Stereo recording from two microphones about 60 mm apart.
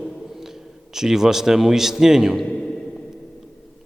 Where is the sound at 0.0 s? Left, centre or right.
Centre.